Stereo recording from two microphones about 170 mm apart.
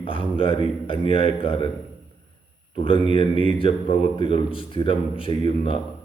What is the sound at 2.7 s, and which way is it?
Speech, 30° left (ahead or behind).